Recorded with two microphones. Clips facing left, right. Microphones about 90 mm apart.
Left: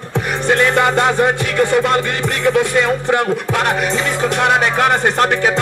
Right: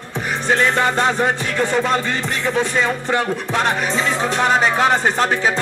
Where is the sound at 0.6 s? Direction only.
10° left (ahead or behind).